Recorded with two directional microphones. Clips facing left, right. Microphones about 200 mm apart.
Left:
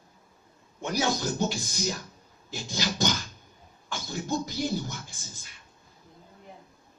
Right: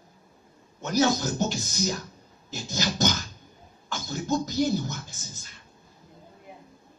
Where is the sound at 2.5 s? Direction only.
45° right (ahead or behind).